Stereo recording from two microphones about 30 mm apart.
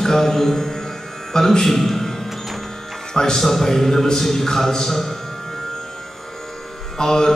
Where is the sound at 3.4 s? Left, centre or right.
Centre.